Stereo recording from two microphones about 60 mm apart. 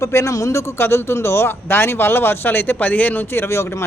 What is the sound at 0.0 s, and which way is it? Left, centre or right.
Speech, left.